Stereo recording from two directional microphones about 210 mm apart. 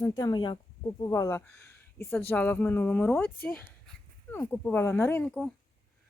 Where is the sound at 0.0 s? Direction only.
20° left (ahead or behind).